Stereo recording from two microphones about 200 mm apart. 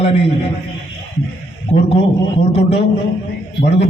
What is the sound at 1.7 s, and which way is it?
Speech, 35° left (ahead or behind).